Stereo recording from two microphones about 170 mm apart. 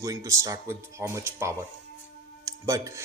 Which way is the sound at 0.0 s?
20° right (ahead or behind).